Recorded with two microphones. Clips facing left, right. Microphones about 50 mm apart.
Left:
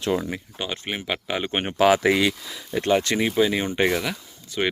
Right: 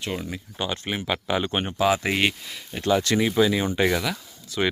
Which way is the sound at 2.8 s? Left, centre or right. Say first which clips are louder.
Even; left.